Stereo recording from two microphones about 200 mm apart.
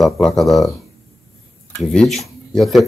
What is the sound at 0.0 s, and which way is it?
Speech, centre (ahead or behind).